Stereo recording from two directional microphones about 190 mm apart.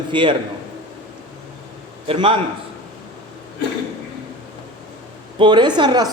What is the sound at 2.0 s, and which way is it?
Speech, 30° right (ahead or behind).